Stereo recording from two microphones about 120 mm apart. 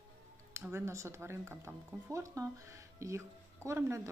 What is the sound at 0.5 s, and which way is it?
Speech, 20° right (ahead or behind).